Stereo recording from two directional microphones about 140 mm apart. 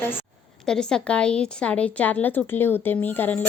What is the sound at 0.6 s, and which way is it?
A woman's voice, 5° left (ahead or behind).